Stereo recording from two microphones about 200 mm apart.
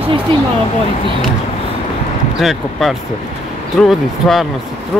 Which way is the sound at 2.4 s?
Centre (ahead or behind).